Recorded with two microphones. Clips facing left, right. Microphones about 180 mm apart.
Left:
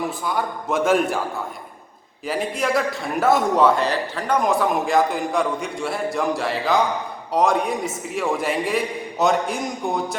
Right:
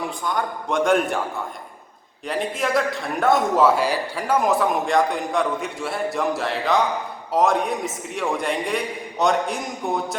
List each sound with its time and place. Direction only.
0.3 s a man's voice: 5° left (ahead or behind)
2.2 s a man's voice: centre (ahead or behind)